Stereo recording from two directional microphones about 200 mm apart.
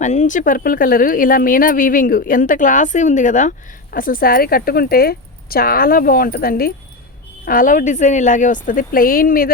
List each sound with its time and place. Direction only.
0.0 s speech: 35° left (ahead or behind)